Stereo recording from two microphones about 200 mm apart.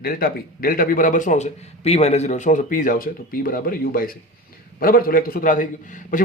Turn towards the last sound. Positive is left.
turn(degrees=40)  # may be behind; listen again after turning